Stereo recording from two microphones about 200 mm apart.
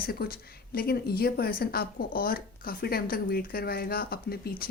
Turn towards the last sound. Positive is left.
turn(degrees=50)  # may be behind; listen again after turning